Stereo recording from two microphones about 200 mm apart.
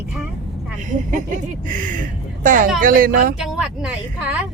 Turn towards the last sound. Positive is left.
turn(degrees=-5)  # may be behind; listen again after turning